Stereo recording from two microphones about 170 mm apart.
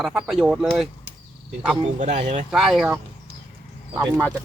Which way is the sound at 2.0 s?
45° right (ahead or behind).